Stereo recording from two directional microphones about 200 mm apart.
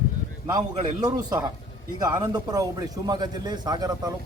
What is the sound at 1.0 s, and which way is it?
A man's voice, 20° right (ahead or behind).